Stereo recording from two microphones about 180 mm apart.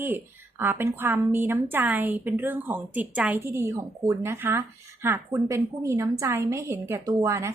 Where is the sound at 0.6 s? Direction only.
10° right (ahead or behind).